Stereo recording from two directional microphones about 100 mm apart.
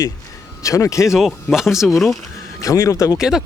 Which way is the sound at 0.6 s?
30° left (ahead or behind).